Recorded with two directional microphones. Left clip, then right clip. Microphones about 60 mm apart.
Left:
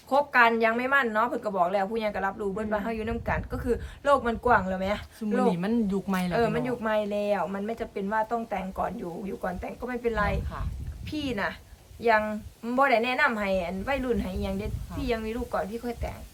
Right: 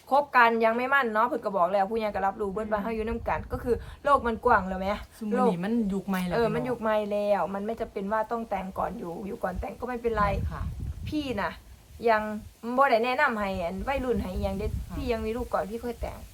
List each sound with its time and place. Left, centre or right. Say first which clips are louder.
0.1 s a woman's voice: even; right
5.5 s speech: left 1 dB; centre
6.3 s a woman's voice: even; right